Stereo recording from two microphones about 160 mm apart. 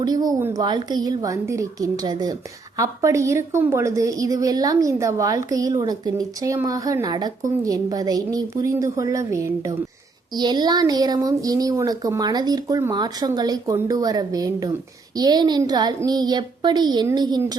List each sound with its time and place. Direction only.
0.0 s a woman's voice: 25° right (ahead or behind)